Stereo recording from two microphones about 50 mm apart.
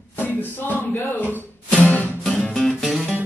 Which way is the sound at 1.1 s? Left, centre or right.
Left.